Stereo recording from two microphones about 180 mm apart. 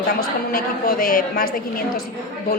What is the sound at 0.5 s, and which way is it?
Speech, 50° left (ahead or behind).